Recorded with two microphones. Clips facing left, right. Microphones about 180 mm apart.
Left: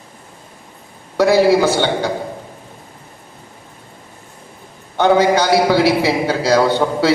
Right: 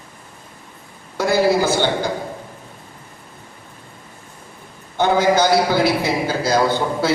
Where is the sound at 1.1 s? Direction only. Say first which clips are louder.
Left 5 dB; 65° left (ahead or behind).